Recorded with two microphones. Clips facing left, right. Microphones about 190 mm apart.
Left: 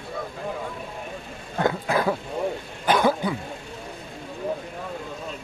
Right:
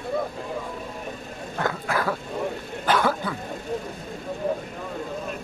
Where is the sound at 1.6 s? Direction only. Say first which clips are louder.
Left 4 dB; 20° left (ahead or behind).